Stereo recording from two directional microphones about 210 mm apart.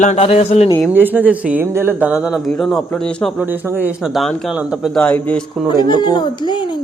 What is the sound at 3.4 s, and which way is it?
A man's voice, 10° right (ahead or behind).